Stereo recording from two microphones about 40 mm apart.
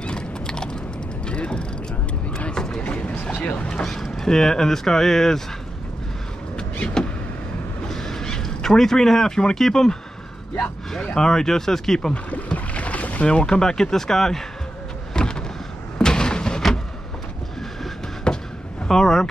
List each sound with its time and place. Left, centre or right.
0.0 s clip-clop: left
1.2 s vehicle: left
2.5 s a sound: centre
2.8 s boat: left
3.8 s speech: centre
6.5 s vehicle: left
7.9 s a sound: centre
11.1 s speech: centre
12.1 s boat: left
13.3 s speech: centre
15.1 s a sound: centre
18.3 s a sound: left
18.9 s speech: centre